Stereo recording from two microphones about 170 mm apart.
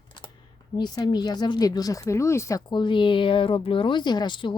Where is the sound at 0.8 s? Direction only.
25° left (ahead or behind).